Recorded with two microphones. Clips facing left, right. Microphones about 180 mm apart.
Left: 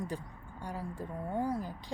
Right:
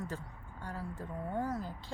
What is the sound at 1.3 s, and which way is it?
Speech, 10° left (ahead or behind).